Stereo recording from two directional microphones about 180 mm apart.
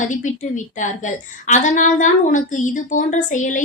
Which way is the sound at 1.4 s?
45° left (ahead or behind).